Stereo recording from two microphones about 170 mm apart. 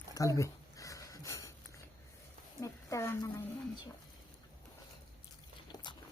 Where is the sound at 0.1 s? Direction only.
20° left (ahead or behind).